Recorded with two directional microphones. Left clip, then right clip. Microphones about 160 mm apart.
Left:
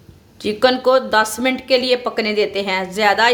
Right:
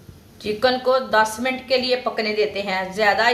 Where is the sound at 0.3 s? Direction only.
90° left.